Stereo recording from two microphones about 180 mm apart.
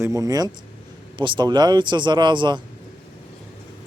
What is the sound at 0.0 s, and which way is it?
Speech, 20° right (ahead or behind).